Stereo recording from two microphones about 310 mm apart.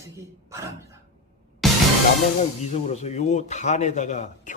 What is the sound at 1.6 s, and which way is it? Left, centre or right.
Music, centre.